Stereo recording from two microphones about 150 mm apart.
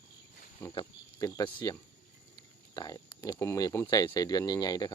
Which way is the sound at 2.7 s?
25° left (ahead or behind).